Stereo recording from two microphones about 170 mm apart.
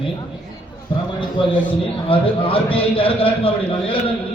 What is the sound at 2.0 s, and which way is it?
A man's voice, 30° left (ahead or behind).